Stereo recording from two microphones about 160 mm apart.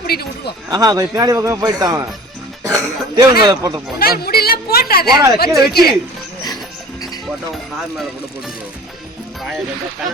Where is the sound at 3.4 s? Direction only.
25° right (ahead or behind).